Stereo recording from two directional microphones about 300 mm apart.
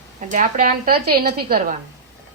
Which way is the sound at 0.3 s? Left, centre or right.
Right.